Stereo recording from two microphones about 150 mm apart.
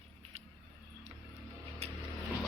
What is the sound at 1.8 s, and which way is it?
Vehicle, 45° right (ahead or behind).